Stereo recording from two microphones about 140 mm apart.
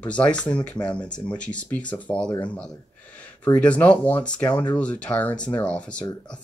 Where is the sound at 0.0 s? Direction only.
10° left (ahead or behind).